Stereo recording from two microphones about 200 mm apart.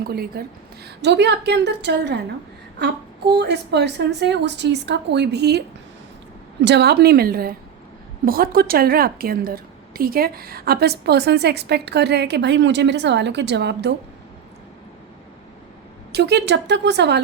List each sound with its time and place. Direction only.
0.0 s a woman's voice: 50° right (ahead or behind)
16.1 s a woman's voice: 60° right (ahead or behind)